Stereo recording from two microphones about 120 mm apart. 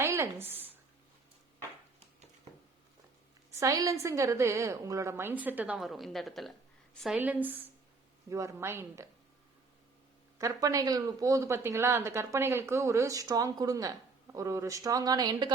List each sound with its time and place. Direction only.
0.0 s a sound: 25° right (ahead or behind)
3.6 s speech: 30° right (ahead or behind); by 6.5 s centre (ahead or behind)
7.2 s a woman's voice: 15° right (ahead or behind)
8.3 s speech: 25° right (ahead or behind)
10.3 s speech: 25° right (ahead or behind)